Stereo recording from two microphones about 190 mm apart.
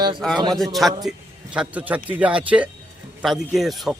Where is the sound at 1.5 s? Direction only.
5° right (ahead or behind).